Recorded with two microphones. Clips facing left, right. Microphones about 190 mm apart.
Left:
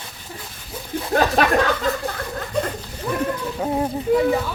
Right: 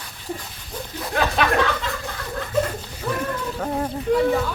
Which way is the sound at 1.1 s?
40° left (ahead or behind).